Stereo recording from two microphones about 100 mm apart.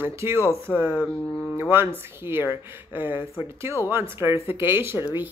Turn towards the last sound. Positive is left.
turn(degrees=-20)  # may be behind; listen again after turning